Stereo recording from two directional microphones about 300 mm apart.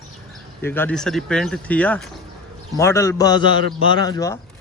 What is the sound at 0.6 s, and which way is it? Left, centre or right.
A man's voice, centre.